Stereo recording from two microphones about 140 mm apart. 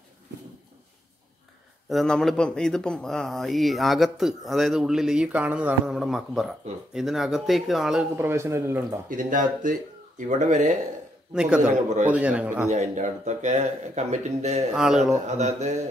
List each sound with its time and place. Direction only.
1.9 s speech: 5° left (ahead or behind)
8.2 s speech: 20° right (ahead or behind)
9.1 s speech: 65° right (ahead or behind)
11.3 s speech: 5° right (ahead or behind)
12.6 s speech: 55° right (ahead or behind)
14.7 s speech: 5° right (ahead or behind)
15.2 s speech: 55° right (ahead or behind)